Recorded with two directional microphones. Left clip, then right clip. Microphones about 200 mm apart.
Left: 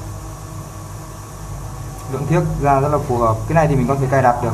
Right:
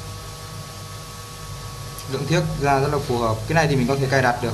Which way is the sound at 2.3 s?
15° right (ahead or behind).